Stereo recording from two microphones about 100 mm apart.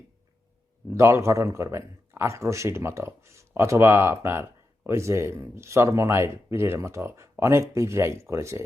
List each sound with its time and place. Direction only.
0.9 s a man's voice: 25° right (ahead or behind)